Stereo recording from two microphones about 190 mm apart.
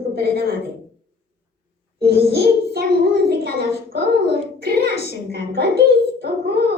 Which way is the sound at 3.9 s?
55° right (ahead or behind).